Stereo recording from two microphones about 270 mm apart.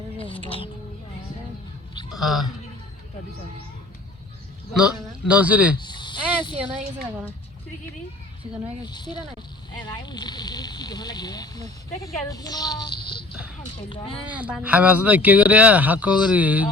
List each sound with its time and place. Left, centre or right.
0.2 s a sound: centre
2.0 s speech: centre
4.7 s speech: centre
5.8 s speech: centre
8.8 s speech: centre
13.3 s a sound: centre
13.9 s speech: centre
14.3 s speech: centre